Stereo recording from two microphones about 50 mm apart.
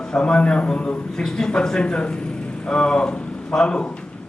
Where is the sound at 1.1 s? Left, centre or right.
Centre.